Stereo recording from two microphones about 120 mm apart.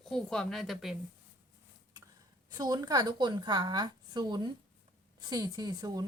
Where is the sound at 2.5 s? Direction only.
35° right (ahead or behind).